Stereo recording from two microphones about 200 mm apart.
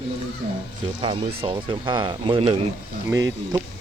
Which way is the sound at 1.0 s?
25° right (ahead or behind).